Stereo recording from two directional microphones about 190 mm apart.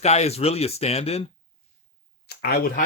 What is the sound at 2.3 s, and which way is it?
Speech, 55° left (ahead or behind).